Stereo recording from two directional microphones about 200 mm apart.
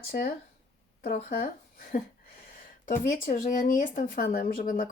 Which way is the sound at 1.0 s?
45° left (ahead or behind).